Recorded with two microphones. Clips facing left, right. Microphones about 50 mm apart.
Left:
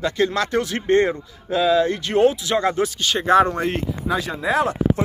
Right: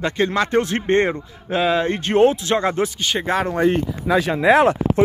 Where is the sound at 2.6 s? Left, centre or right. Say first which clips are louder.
Even; right.